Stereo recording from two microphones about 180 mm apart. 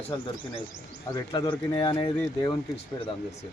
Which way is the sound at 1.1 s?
20° left (ahead or behind).